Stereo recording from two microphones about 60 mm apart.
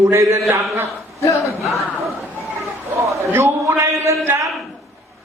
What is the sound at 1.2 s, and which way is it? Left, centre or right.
Speech, left.